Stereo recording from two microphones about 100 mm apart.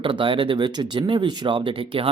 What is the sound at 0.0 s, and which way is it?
Speech, 60° right (ahead or behind).